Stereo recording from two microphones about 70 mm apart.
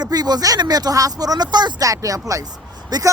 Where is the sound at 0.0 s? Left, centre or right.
Right.